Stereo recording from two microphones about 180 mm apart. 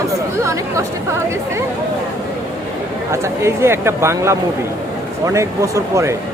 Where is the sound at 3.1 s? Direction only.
15° right (ahead or behind).